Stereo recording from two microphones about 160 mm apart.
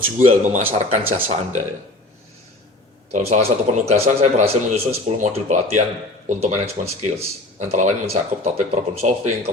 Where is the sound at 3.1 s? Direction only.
45° right (ahead or behind).